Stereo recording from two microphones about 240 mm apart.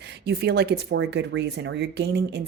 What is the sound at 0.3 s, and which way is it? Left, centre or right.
Speech, right.